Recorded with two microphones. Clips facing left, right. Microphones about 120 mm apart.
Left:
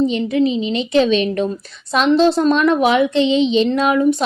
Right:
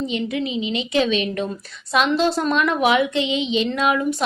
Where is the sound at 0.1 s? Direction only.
35° left (ahead or behind).